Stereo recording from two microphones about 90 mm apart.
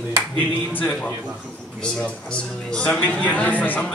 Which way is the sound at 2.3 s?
10° left (ahead or behind).